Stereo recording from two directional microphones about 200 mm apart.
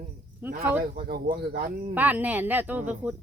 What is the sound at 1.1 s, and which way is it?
Speech, 45° right (ahead or behind).